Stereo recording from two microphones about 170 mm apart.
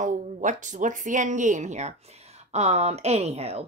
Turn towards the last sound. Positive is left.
turn(degrees=-40)  # may be behind; listen again after turning